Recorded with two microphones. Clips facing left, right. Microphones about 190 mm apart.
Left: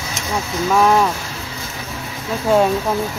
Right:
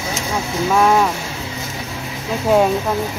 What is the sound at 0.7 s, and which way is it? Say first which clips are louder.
Speech: even; 5° right (ahead or behind).